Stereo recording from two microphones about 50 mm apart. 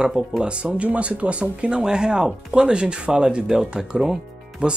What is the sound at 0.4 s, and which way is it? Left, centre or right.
Speech, centre.